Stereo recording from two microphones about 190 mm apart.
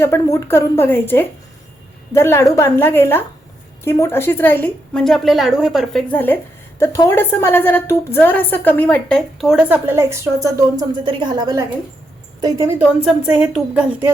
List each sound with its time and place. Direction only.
0.0 s a woman's voice: 15° left (ahead or behind); by 14.1 s 5° right (ahead or behind)